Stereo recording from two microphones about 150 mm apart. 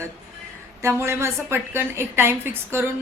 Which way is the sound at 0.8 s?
15° right (ahead or behind).